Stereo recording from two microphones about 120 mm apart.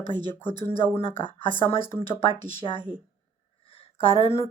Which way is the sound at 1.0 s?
45° left (ahead or behind).